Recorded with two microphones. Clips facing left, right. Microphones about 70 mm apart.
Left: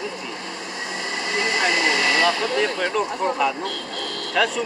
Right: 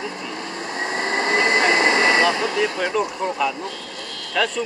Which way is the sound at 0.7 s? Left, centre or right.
Right.